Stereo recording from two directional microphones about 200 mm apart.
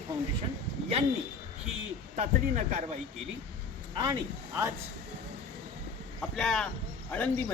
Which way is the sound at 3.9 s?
20° right (ahead or behind).